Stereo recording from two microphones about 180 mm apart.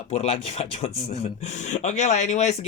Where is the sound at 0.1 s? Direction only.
35° left (ahead or behind).